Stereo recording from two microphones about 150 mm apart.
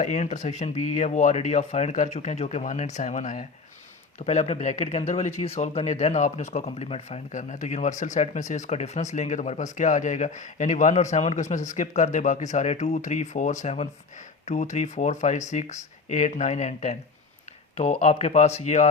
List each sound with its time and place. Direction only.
0.0 s speech: 50° left (ahead or behind)
4.3 s speech: 45° left (ahead or behind)